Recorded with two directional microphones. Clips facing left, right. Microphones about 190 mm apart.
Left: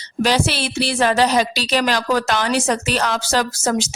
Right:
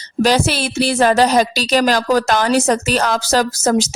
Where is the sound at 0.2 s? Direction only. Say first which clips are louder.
Right 3 dB; 45° right (ahead or behind).